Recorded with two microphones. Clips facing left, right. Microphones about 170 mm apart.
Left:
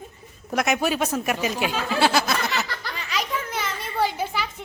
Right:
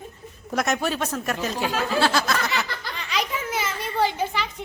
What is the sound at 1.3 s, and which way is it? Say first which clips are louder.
Snicker: left 1 dB; 10° left (ahead or behind).